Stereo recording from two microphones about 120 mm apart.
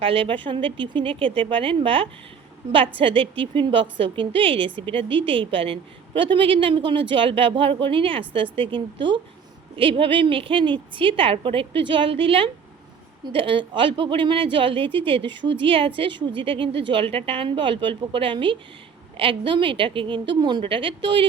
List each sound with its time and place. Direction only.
0.0 s a woman's voice: 50° right (ahead or behind)